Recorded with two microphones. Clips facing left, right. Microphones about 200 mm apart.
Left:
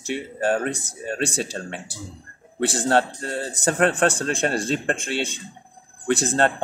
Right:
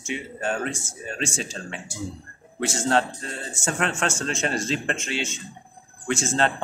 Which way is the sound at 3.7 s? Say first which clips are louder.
Left 6 dB; 55° left (ahead or behind).